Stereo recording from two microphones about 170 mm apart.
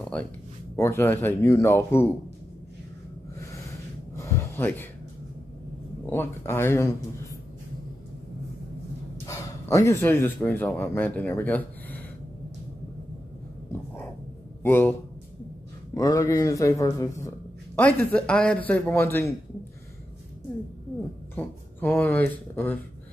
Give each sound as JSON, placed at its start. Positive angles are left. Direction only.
{"t": 0.0, "sound": "a sound", "side_deg": 10}
{"t": 0.7, "sound": "a man's voice", "side_deg": 15}
{"t": 3.3, "sound": "a sound", "side_deg": 15}
{"t": 6.0, "sound": "a man's voice", "side_deg": 15}
{"t": 9.3, "sound": "speech", "side_deg": 20}
{"t": 14.6, "sound": "a man's voice", "side_deg": 15}
{"t": 17.7, "sound": "a man's voice", "side_deg": 5}
{"t": 21.4, "sound": "speech", "side_deg": 10}